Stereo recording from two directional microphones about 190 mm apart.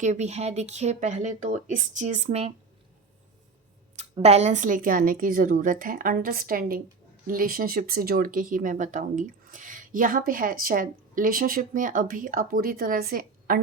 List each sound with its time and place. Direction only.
0.0 s speech: 35° right (ahead or behind)
4.2 s speech: 35° right (ahead or behind); by 13.6 s 50° right (ahead or behind)